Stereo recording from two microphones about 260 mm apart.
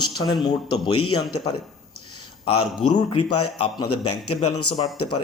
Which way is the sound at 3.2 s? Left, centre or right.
Left.